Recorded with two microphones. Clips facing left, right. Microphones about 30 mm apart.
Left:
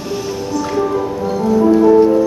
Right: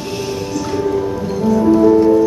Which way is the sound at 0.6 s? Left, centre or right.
Centre.